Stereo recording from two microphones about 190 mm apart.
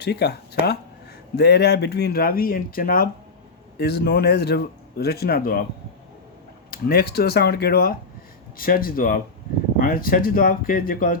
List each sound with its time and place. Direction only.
0.0 s speech: 60° left (ahead or behind)
6.7 s speech: 55° left (ahead or behind)